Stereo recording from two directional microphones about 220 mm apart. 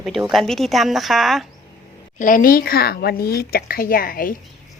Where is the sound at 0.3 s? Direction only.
Centre (ahead or behind).